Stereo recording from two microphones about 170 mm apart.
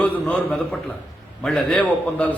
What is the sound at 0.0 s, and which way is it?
A man's voice, 5° left (ahead or behind).